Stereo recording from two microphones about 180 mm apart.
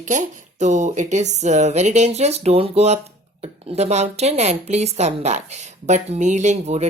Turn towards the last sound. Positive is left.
turn(degrees=-40)  # may be behind; listen again after turning